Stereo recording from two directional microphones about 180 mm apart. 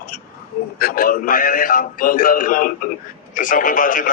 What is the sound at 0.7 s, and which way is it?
A man's voice, 55° left (ahead or behind).